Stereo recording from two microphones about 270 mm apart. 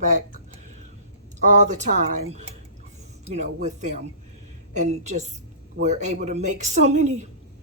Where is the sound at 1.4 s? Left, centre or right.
Right.